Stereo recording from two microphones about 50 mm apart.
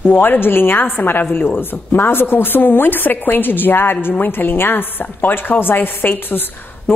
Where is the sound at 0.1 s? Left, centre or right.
Left.